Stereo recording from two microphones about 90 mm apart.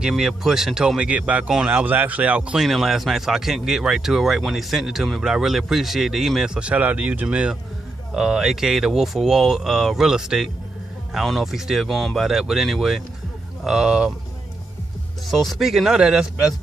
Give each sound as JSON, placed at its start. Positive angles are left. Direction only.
{"t": 0.0, "sound": "speech", "side_deg": -5}
{"t": 2.6, "sound": "speech", "side_deg": -5}
{"t": 15.3, "sound": "speech", "side_deg": 0}